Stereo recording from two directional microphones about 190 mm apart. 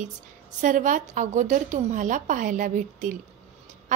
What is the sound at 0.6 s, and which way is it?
A woman's voice, 40° right (ahead or behind).